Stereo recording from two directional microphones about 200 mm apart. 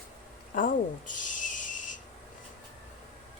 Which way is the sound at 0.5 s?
40° left (ahead or behind).